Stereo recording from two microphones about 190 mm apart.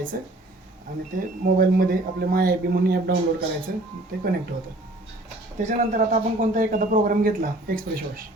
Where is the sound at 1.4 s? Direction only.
50° right (ahead or behind).